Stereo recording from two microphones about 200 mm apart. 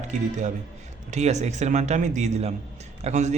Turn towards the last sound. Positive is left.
turn(degrees=-35)  # may be behind; listen again after turning